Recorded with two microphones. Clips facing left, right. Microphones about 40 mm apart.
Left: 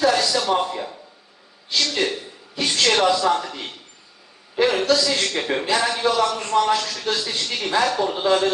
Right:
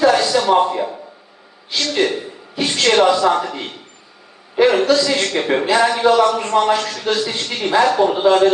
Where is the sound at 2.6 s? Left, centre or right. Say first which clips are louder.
Right 3 dB; right.